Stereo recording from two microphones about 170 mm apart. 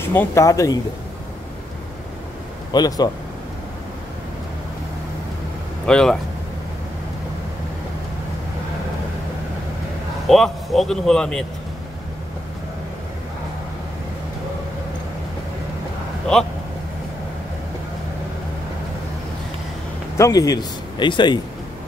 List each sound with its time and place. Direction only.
0.0 s speech: 15° left (ahead or behind)
2.7 s speech: 25° left (ahead or behind)
5.9 s a man's voice: 5° left (ahead or behind)
10.2 s a man's voice: centre (ahead or behind)
20.2 s speech: 20° left (ahead or behind)